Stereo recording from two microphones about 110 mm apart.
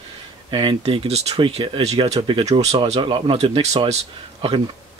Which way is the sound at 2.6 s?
70° right (ahead or behind).